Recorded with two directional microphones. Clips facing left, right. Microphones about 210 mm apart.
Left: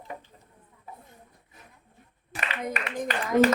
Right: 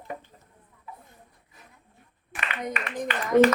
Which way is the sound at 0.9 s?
40° left (ahead or behind).